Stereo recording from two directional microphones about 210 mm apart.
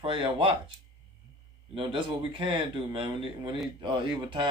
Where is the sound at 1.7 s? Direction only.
25° right (ahead or behind).